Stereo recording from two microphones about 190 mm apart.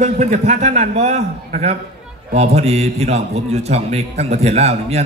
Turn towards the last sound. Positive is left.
turn(degrees=-35)  # may be behind; listen again after turning